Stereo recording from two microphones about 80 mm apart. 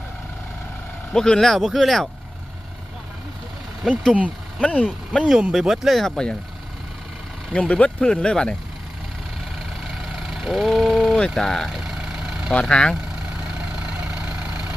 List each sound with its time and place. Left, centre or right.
1.1 s speech: centre
3.8 s speech: centre
4.6 s speech: centre
5.2 s speech: centre
7.5 s speech: centre
10.2 s vehicle: centre
12.5 s speech: centre
13.7 s vehicle: centre